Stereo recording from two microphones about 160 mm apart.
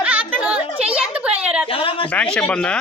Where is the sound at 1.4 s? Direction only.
5° right (ahead or behind).